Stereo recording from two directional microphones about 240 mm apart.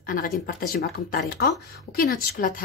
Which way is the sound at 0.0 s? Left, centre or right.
Left.